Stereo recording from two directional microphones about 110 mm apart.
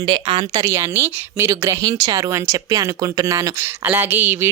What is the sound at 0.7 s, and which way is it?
Speech, 25° right (ahead or behind).